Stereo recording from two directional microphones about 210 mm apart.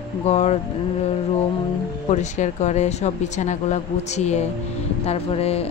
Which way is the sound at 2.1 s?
35° left (ahead or behind).